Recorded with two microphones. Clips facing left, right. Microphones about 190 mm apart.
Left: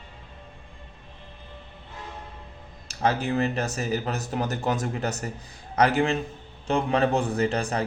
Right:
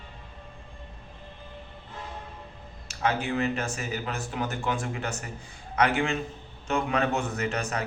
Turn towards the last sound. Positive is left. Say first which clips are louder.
# left 5 dB
turn(degrees=30)  # may be behind; listen again after turning